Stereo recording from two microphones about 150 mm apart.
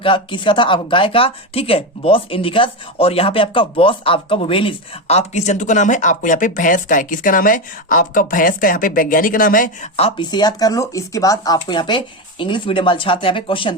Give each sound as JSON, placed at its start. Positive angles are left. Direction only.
{"t": 0.0, "sound": "speech", "side_deg": 35}
{"t": 10.2, "sound": "speech", "side_deg": 25}